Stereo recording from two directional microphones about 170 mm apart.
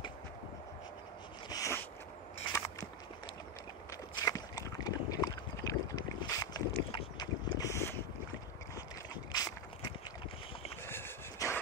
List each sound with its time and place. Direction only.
1.5 s a sound: 20° left (ahead or behind)
4.1 s boat: 20° left (ahead or behind)
9.3 s walk: 25° left (ahead or behind)
10.9 s dog: 15° left (ahead or behind)